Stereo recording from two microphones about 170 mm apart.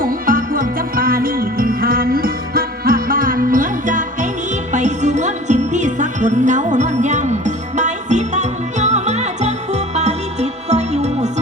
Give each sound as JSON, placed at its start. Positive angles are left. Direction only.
{"t": 0.0, "sound": "music", "side_deg": -55}